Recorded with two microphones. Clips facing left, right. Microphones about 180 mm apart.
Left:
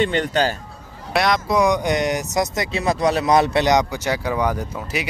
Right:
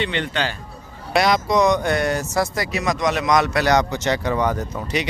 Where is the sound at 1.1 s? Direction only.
Centre (ahead or behind).